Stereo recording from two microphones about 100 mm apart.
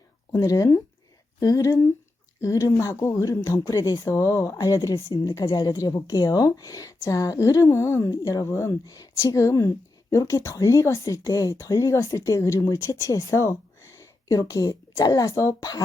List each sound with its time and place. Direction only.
0.3 s speech: 30° left (ahead or behind)